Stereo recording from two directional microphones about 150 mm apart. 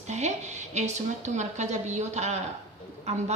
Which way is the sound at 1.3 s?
50° right (ahead or behind).